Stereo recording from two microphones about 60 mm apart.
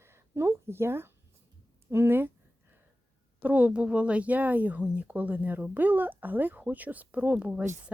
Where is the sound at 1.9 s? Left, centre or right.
Right.